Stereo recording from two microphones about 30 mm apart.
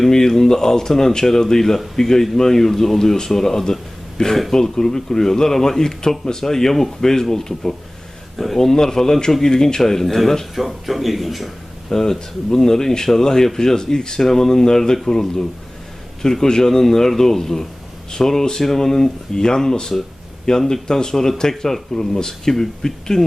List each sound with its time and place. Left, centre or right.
0.1 s a man's voice: centre
11.9 s speech: centre
14.2 s speech: centre